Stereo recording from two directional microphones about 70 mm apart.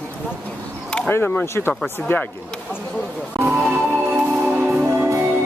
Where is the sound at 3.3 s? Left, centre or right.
Right.